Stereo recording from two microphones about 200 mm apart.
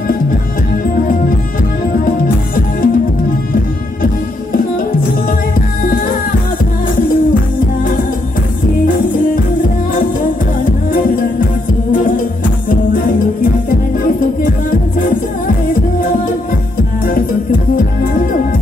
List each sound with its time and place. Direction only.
2.0 s music: 45° left (ahead or behind)
10.9 s music: 45° left (ahead or behind)
12.6 s music: 45° left (ahead or behind)
17.0 s music: 45° left (ahead or behind)